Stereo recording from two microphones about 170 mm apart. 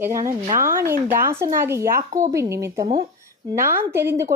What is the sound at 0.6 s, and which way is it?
Speech, 15° right (ahead or behind).